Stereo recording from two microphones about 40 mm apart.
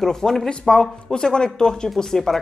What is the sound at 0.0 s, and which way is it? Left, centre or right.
Speech, centre.